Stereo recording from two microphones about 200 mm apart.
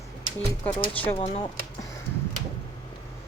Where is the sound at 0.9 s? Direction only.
10° left (ahead or behind).